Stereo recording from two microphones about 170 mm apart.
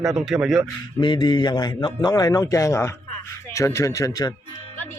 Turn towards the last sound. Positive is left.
turn(degrees=20)  # may be behind; listen again after turning